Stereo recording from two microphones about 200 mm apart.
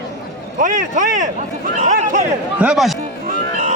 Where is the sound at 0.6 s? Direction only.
40° right (ahead or behind).